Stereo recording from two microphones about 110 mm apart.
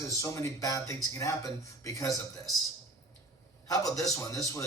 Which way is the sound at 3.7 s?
30° left (ahead or behind).